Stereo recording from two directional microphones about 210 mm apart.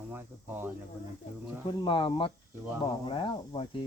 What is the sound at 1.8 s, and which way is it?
Speech, 20° left (ahead or behind).